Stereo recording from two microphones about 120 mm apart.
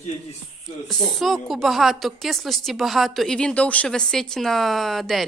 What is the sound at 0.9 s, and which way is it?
A woman's voice, centre (ahead or behind).